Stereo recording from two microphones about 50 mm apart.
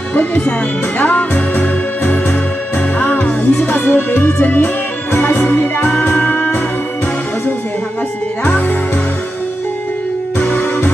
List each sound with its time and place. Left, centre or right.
0.1 s music: left
8.5 s music: left
10.4 s music: left